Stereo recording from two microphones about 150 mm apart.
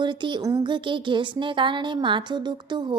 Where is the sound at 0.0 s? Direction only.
30° right (ahead or behind).